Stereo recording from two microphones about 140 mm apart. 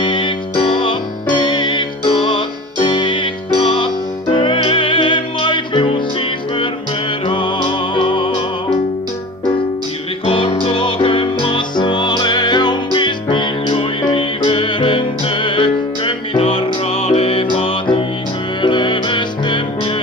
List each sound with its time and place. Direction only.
0.0 s music: 35° left (ahead or behind)
7.2 s music: 35° left (ahead or behind)
10.2 s music: 40° left (ahead or behind)